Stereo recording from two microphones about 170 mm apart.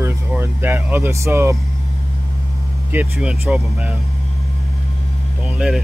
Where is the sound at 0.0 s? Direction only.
15° right (ahead or behind).